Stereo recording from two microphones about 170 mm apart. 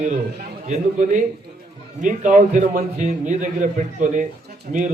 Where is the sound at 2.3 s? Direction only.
50° right (ahead or behind).